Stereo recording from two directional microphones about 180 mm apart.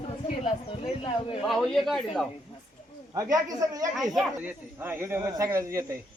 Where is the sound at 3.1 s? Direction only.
20° right (ahead or behind).